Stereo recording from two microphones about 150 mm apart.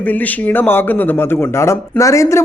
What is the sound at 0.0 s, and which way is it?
A man's voice, 10° left (ahead or behind).